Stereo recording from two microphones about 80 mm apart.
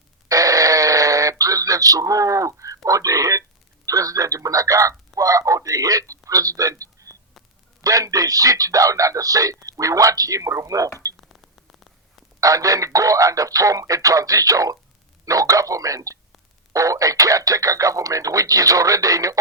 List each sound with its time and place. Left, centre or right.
0.3 s a sound: right
3.8 s a man's voice: right
11.2 s static: centre
12.4 s a man's voice: right